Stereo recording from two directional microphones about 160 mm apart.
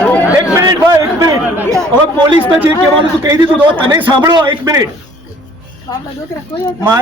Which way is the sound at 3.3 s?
20° right (ahead or behind).